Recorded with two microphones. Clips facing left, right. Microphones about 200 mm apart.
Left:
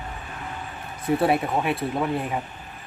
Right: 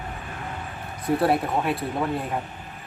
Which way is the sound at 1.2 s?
Centre (ahead or behind).